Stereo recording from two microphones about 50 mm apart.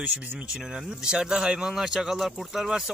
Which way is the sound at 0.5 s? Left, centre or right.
Centre.